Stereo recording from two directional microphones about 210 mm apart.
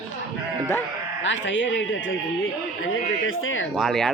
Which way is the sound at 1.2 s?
60° left (ahead or behind).